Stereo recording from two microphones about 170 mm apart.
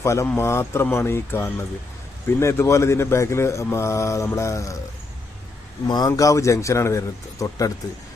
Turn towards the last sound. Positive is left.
turn(degrees=20)  # may be behind; listen again after turning